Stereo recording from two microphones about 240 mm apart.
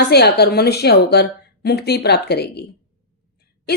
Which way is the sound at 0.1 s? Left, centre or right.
Left.